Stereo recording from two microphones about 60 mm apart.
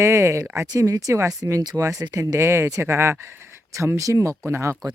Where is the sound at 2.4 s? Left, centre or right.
Right.